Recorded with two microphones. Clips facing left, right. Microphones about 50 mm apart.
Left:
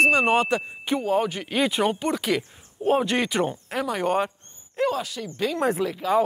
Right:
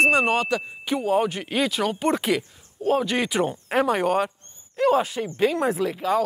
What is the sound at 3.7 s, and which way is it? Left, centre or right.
Speech, right.